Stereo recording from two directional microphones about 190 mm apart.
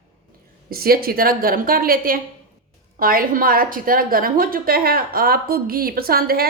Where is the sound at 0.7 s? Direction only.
50° right (ahead or behind).